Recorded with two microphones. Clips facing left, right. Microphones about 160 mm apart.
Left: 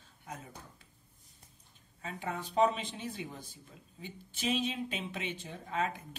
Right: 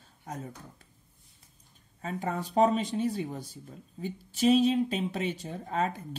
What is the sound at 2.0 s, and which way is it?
Speech, 40° right (ahead or behind).